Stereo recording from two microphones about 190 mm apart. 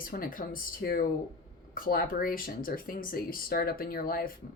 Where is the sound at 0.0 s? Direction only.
50° left (ahead or behind).